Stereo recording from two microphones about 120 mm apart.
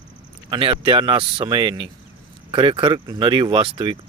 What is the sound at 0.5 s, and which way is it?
Speech, 45° right (ahead or behind).